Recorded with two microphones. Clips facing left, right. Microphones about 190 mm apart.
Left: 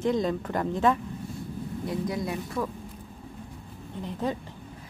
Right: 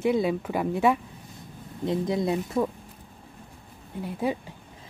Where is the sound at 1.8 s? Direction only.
25° right (ahead or behind).